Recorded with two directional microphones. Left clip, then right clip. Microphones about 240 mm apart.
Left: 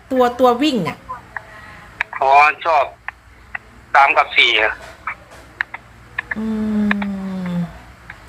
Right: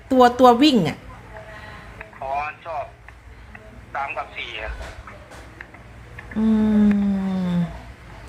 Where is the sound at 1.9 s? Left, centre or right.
Left.